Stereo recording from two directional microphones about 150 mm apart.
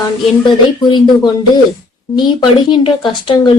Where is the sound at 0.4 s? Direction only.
30° left (ahead or behind).